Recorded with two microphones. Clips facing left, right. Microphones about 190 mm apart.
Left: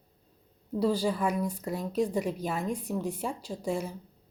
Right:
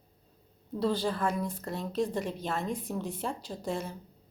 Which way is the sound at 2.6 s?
30° right (ahead or behind).